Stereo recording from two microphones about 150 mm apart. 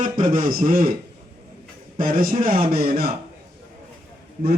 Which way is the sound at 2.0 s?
70° right (ahead or behind).